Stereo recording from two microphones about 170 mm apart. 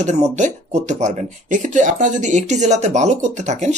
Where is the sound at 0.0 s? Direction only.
45° right (ahead or behind).